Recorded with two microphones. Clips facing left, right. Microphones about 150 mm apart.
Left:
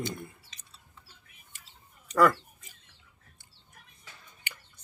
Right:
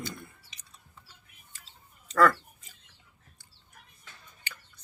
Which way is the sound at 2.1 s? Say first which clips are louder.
Even; 15° left (ahead or behind).